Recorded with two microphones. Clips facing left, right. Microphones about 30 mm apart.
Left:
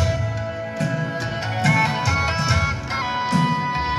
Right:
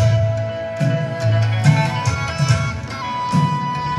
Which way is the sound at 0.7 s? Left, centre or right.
Centre.